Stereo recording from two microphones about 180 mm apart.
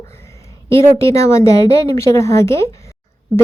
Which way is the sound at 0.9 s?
15° left (ahead or behind).